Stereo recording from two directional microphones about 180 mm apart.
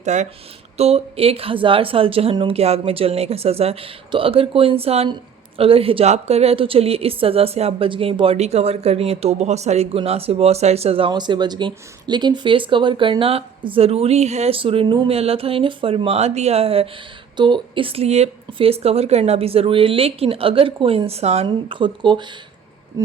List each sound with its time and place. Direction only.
0.0 s a woman's voice: 40° right (ahead or behind)